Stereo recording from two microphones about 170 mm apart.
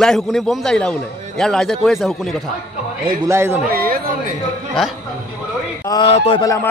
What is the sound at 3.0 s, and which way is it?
Speech, 15° right (ahead or behind).